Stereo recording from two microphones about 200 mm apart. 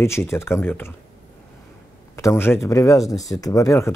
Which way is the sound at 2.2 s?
15° left (ahead or behind).